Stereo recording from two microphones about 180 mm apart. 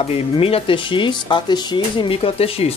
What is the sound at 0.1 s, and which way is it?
Speech, 30° left (ahead or behind).